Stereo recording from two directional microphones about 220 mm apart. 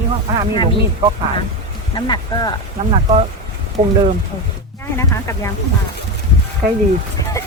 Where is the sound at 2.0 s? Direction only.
20° left (ahead or behind).